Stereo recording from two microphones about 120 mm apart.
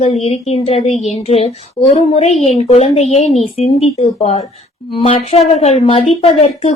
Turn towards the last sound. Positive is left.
turn(degrees=55)  # may be behind; listen again after turning